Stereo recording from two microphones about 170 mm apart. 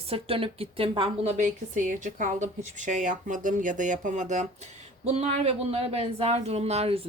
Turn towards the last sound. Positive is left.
turn(degrees=-35)  # may be behind; listen again after turning